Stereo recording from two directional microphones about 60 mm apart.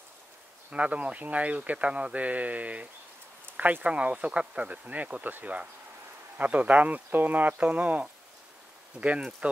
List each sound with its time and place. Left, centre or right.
0.7 s speech: right